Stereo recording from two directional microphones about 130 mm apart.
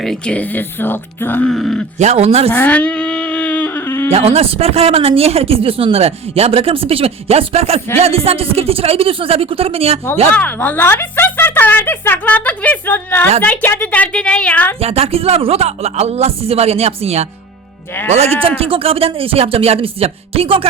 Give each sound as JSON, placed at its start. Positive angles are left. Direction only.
{"t": 0.0, "sound": "speech", "side_deg": 5}
{"t": 1.5, "sound": "speech", "side_deg": 5}
{"t": 2.0, "sound": "speech", "side_deg": -60}
{"t": 2.5, "sound": "a sound", "side_deg": 10}
{"t": 4.1, "sound": "speech", "side_deg": -50}
{"t": 10.3, "sound": "speech", "side_deg": 10}
{"t": 14.8, "sound": "speech", "side_deg": -50}